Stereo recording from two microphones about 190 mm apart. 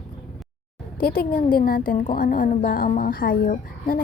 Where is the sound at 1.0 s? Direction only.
50° left (ahead or behind).